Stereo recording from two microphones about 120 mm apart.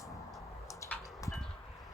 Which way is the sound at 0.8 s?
25° left (ahead or behind).